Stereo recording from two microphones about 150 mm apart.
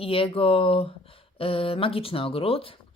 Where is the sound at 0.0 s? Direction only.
40° left (ahead or behind).